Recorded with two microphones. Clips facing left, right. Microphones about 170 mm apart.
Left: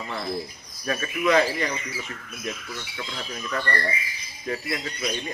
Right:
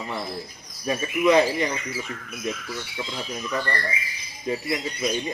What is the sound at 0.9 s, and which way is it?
Speech, 20° right (ahead or behind).